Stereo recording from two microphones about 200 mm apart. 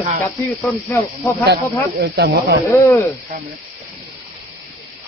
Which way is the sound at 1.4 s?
55° right (ahead or behind).